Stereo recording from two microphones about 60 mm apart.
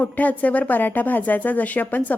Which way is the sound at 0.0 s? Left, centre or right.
Left.